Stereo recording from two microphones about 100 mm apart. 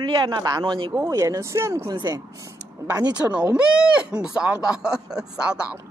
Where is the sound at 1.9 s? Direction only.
40° right (ahead or behind).